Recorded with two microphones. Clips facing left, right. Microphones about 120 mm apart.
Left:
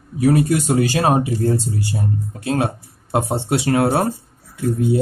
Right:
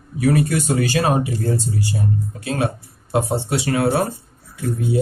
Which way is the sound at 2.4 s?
35° left (ahead or behind).